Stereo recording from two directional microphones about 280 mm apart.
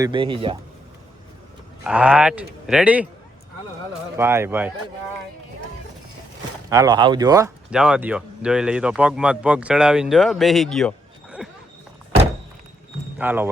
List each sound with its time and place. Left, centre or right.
0.0 s speech: centre
1.8 s speech: centre
4.2 s speech: centre
6.7 s speech: centre
13.1 s speech: centre